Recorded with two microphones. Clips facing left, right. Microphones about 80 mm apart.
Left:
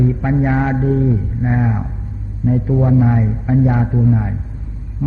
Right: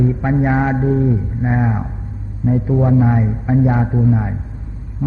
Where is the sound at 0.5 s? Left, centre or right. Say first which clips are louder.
Even; centre.